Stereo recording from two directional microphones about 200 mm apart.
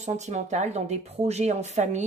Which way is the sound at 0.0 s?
35° right (ahead or behind).